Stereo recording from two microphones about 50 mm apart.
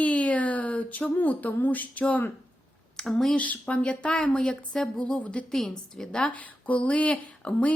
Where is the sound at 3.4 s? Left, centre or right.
Left; by 4.9 s centre.